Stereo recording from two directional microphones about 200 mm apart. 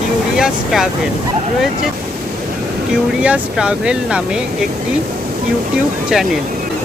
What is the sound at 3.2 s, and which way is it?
Speech, 5° right (ahead or behind).